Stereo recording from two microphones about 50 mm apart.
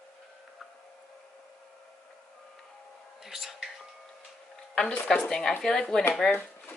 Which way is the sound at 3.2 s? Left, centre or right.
Centre.